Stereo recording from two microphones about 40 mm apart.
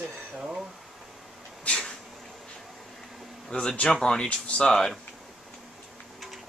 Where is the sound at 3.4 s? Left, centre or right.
Left.